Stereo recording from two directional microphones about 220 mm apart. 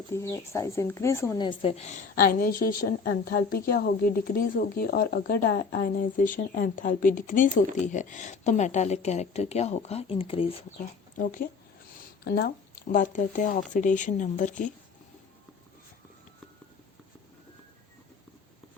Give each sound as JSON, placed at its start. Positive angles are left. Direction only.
{"t": 0.1, "sound": "speech", "side_deg": 15}
{"t": 11.2, "sound": "speech", "side_deg": 35}